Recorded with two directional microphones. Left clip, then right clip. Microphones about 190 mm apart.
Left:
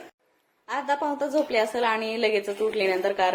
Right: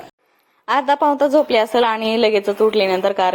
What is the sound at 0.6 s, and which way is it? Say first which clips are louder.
A woman's voice: right 11 dB; 40° right (ahead or behind).